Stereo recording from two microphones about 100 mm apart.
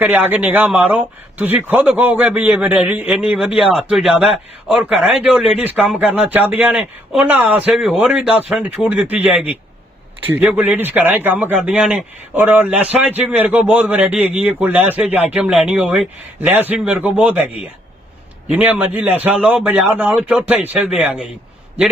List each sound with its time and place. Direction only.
0.0 s speech: 15° right (ahead or behind)
3.3 s speech: 5° right (ahead or behind)
10.6 s speech: 20° right (ahead or behind)
18.5 s speech: 15° right (ahead or behind)